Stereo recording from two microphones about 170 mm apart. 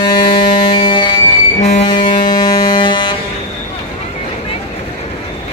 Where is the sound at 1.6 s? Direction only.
40° left (ahead or behind).